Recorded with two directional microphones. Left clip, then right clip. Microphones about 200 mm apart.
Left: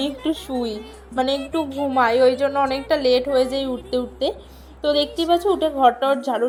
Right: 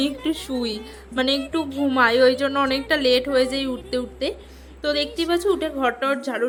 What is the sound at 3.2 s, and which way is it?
A woman's voice, 5° right (ahead or behind).